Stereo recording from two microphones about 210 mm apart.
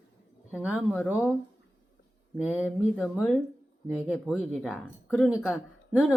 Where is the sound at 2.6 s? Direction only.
10° left (ahead or behind).